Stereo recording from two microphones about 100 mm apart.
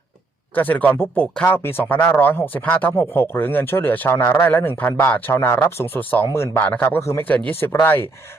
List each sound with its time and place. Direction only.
0.5 s a man's voice: 15° left (ahead or behind)